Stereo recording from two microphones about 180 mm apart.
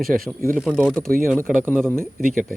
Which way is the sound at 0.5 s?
5° left (ahead or behind).